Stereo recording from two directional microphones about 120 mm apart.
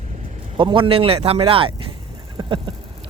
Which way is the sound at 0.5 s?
45° right (ahead or behind).